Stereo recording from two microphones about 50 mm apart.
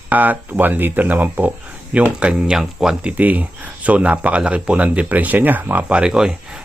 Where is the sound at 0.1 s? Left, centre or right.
Right.